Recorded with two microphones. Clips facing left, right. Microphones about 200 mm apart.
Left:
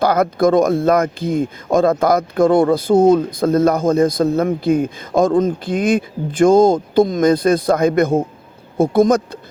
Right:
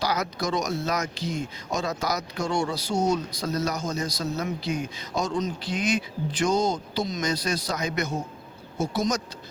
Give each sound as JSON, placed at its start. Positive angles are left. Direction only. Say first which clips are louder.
{"t": 0.0, "sound": "speech", "louder": "left 13 dB", "side_deg": 55}